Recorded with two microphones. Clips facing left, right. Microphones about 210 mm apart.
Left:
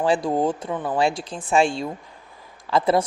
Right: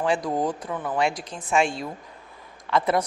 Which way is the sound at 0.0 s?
30° left (ahead or behind).